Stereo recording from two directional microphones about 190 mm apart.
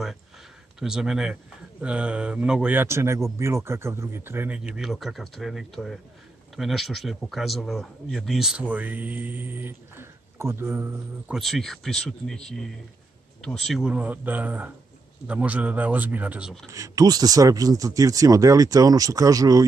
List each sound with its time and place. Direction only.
0.7 s speech: 5° right (ahead or behind)
11.3 s speech: centre (ahead or behind)
16.7 s speech: 20° right (ahead or behind)